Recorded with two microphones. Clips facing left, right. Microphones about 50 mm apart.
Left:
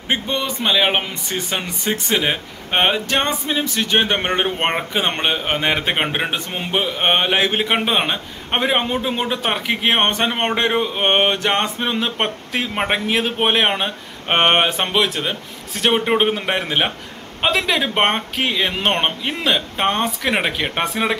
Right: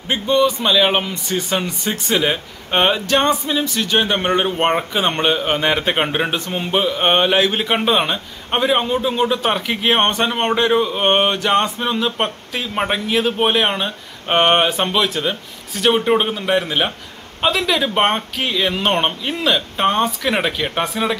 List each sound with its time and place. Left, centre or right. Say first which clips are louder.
0.1 s speech: right 6 dB; left
4.7 s a man's voice: right 2 dB; centre